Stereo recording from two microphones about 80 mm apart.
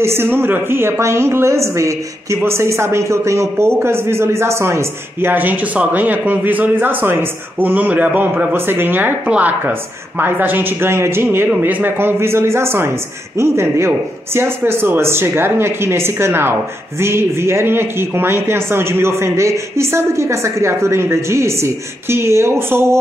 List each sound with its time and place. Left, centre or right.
0.0 s a man's voice: right